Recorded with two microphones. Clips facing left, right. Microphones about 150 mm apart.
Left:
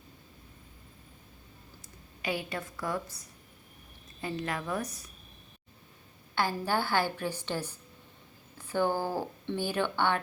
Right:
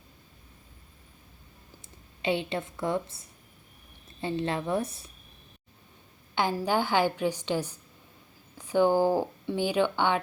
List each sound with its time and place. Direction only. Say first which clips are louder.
2.2 s a woman's voice: right 5 dB; 25° right (ahead or behind)
6.3 s a woman's voice: right 3 dB; 15° right (ahead or behind)